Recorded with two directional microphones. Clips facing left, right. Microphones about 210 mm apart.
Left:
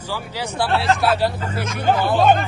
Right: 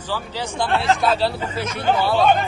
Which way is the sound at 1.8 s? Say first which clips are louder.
Left 1 dB; 50° left (ahead or behind).